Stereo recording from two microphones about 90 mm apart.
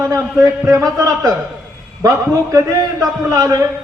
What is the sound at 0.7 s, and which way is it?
A man's voice, 35° right (ahead or behind).